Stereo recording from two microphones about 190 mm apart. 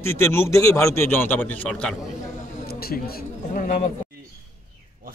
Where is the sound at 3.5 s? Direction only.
40° left (ahead or behind).